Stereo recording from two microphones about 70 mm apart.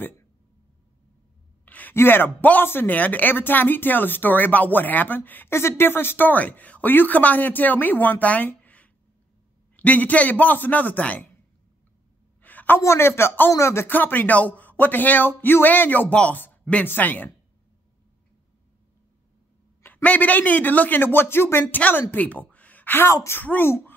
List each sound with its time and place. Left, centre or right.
1.7 s speech: left
12.4 s a sound: left
12.8 s a man's voice: left
13.8 s speech: left
19.8 s speech: left
22.5 s a sound: left
23.4 s a man's voice: left